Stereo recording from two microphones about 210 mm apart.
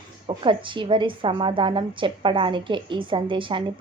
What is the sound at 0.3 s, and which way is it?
A woman's voice, 25° right (ahead or behind).